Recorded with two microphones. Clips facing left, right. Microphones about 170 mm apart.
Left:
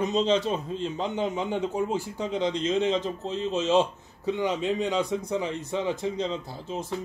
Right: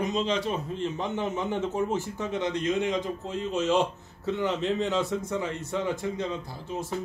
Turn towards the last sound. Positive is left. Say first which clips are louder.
# left 1 dB
turn(degrees=20)  # may be behind; listen again after turning